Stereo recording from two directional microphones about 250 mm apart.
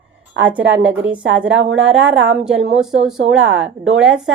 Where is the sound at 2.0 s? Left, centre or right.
Right.